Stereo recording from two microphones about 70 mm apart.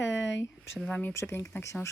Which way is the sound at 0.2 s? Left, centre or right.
Left.